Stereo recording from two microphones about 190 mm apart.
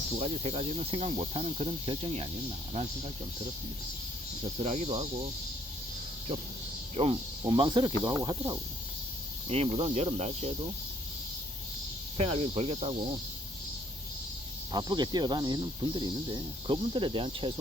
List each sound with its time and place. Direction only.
0.2 s speech: 30° right (ahead or behind)
4.6 s speech: 35° right (ahead or behind)
6.9 s speech: 30° right (ahead or behind)
12.1 s speech: 30° right (ahead or behind)
14.7 s speech: 20° right (ahead or behind)